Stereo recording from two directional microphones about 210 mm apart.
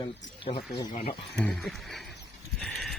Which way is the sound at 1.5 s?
Centre (ahead or behind).